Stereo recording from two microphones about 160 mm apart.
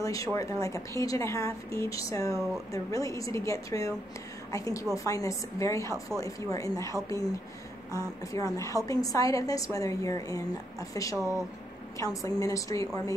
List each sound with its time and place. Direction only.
0.0 s a woman's voice: 20° left (ahead or behind)